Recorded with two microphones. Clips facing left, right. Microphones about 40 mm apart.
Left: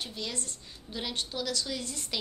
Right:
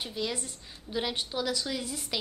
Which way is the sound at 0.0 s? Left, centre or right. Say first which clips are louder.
Right 4 dB; centre.